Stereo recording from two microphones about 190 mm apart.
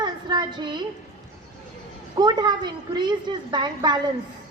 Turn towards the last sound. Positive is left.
turn(degrees=-25)  # may be behind; listen again after turning